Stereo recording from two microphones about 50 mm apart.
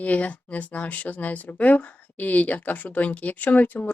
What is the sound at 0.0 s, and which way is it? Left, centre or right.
A woman's voice, left.